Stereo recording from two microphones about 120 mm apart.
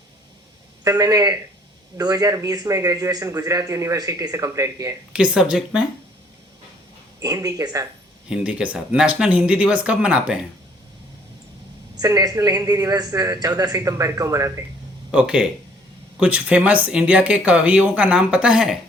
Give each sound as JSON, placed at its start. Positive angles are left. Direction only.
{"t": 0.9, "sound": "a man's voice", "side_deg": -30}
{"t": 5.1, "sound": "speech", "side_deg": -5}
{"t": 7.2, "sound": "a man's voice", "side_deg": -30}
{"t": 8.3, "sound": "speech", "side_deg": -10}
{"t": 11.9, "sound": "a man's voice", "side_deg": -30}
{"t": 15.1, "sound": "speech", "side_deg": -5}